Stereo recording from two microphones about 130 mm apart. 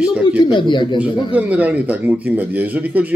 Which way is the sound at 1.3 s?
10° right (ahead or behind).